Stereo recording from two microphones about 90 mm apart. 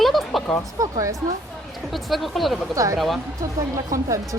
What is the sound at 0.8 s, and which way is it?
Speech, 40° right (ahead or behind).